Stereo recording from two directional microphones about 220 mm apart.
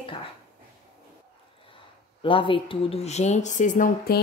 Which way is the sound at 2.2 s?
25° left (ahead or behind).